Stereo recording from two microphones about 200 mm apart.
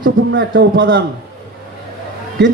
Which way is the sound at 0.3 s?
60° right (ahead or behind).